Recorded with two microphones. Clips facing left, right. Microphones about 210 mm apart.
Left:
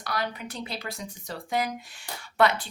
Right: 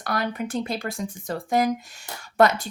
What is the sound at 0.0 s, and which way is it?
Speech, 50° right (ahead or behind).